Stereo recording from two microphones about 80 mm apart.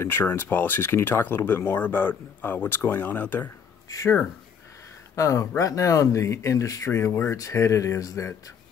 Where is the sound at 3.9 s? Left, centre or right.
Left.